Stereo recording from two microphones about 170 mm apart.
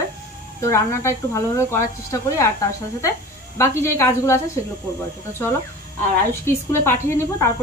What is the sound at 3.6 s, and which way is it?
A woman's voice, 15° left (ahead or behind).